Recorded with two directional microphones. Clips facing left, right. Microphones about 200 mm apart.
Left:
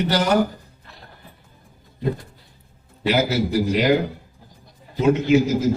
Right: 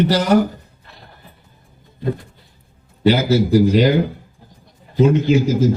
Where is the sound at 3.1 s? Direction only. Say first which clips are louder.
Right 6 dB; 30° right (ahead or behind).